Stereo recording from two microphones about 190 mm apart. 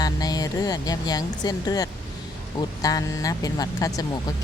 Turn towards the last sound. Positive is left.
turn(degrees=20)  # may be behind; listen again after turning